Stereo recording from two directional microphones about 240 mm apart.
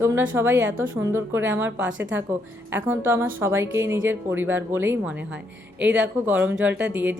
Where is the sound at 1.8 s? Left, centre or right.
Right.